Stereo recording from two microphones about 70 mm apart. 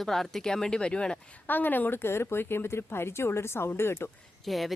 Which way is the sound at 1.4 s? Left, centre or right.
Left.